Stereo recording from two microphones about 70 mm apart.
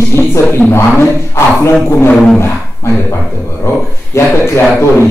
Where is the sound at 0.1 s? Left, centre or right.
Left.